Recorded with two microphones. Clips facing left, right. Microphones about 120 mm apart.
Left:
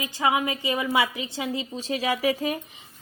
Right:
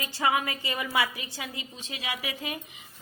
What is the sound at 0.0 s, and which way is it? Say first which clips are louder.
A woman's voice: left 3 dB; 15° left (ahead or behind).